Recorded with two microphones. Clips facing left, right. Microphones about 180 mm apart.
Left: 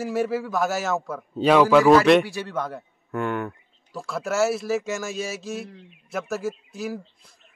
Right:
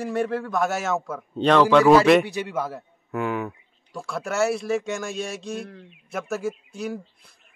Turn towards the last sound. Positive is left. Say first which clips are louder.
# even
turn(degrees=0)  # may be behind; listen again after turning